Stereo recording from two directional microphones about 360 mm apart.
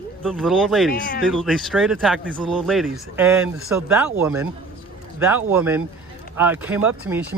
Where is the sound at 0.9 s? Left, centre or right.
Left.